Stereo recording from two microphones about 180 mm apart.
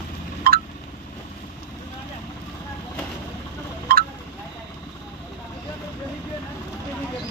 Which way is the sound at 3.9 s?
60° right (ahead or behind).